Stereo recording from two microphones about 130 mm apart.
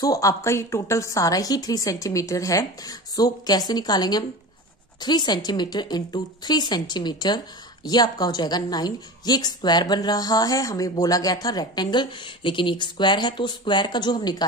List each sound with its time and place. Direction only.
0.0 s a woman's voice: 25° left (ahead or behind)